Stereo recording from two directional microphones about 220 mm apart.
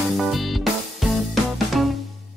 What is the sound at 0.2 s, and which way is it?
Music, centre (ahead or behind).